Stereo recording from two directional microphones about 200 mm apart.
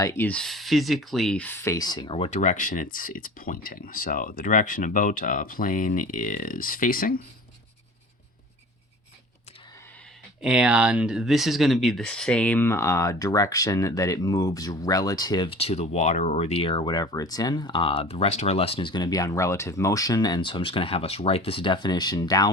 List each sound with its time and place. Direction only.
0.0 s speech: 10° left (ahead or behind); by 7.2 s 45° left (ahead or behind)
10.4 s speech: 5° right (ahead or behind); by 22.5 s 20° left (ahead or behind)